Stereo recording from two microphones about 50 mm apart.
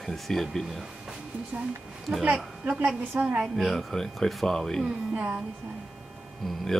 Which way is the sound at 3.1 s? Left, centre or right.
Right.